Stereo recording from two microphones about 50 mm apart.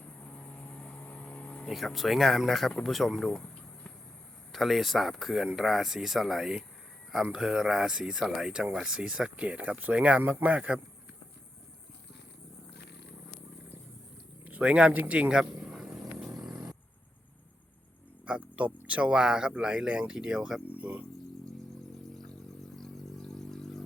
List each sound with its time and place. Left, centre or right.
0.3 s vehicle: centre
1.7 s speech: centre
4.5 s speech: centre; by 10.8 s right
14.4 s a sound: right
14.9 s speech: right
15.4 s a sound: centre
18.5 s speech: right; by 20.6 s centre
20.7 s speech: right
22.1 s a sound: centre